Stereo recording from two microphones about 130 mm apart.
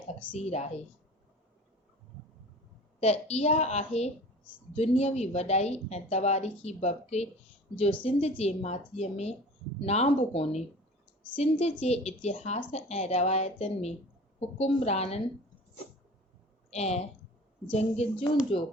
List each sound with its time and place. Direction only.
0.3 s a woman's voice: 55° left (ahead or behind)
3.0 s a woman's voice: 55° left (ahead or behind)
16.7 s a woman's voice: 55° left (ahead or behind)